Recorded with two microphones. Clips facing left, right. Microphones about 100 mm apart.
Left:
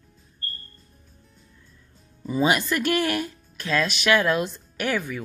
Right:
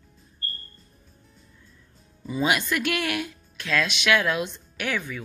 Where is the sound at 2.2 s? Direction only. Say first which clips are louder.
Left 3 dB; centre (ahead or behind).